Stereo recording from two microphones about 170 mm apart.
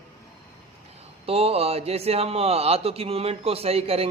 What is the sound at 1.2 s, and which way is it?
Speech, 35° right (ahead or behind).